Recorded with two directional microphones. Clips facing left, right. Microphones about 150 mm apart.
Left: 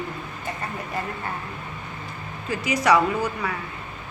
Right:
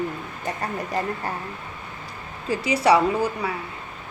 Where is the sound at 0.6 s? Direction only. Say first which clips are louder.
Right 5 dB; 40° right (ahead or behind).